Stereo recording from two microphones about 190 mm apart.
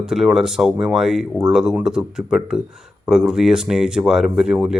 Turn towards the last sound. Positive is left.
turn(degrees=-5)  # may be behind; listen again after turning